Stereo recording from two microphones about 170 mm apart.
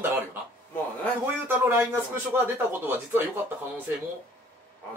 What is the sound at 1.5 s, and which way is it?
Speech, 15° right (ahead or behind).